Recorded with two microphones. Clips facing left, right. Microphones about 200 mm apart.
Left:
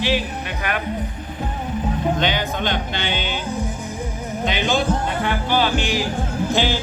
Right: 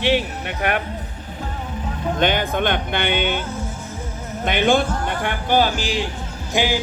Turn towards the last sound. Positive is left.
turn(degrees=-15)  # may be behind; listen again after turning